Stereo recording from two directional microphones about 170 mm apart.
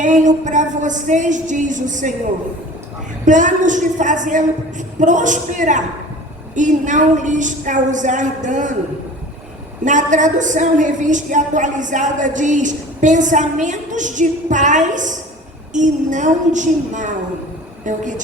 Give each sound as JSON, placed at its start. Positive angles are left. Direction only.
{"t": 0.0, "sound": "a woman's voice", "side_deg": -45}
{"t": 3.2, "sound": "a woman's voice", "side_deg": -45}
{"t": 9.8, "sound": "a woman's voice", "side_deg": -45}